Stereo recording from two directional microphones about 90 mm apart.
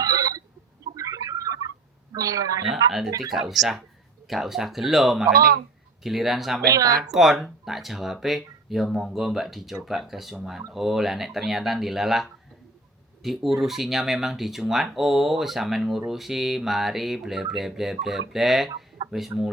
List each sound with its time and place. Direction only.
0.0 s a sound: 40° right (ahead or behind)
2.1 s a woman's voice: 40° right (ahead or behind)
3.5 s speech: centre (ahead or behind)
6.7 s a woman's voice: 40° right (ahead or behind)
7.1 s speech: 5° right (ahead or behind)
19.0 s chicken: 55° right (ahead or behind)